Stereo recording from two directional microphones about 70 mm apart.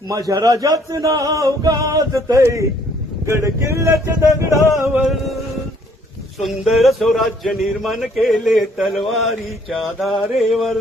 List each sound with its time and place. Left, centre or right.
0.1 s speech: right
6.4 s speech: centre